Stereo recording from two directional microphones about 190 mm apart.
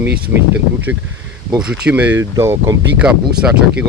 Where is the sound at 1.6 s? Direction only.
5° right (ahead or behind).